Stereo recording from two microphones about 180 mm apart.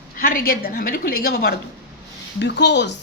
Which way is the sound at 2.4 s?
75° left (ahead or behind).